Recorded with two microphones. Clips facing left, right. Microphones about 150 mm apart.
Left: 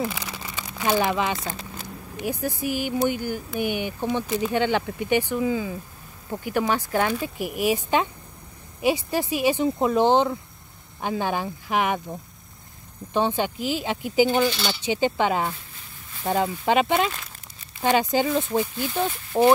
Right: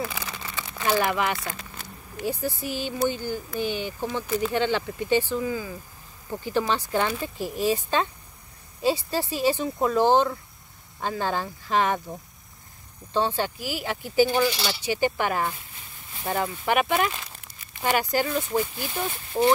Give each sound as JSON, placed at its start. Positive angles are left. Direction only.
{"t": 0.1, "sound": "speech", "side_deg": 15}
{"t": 13.1, "sound": "speech", "side_deg": 15}